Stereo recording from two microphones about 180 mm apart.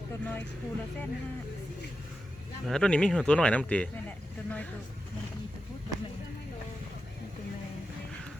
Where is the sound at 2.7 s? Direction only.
5° left (ahead or behind).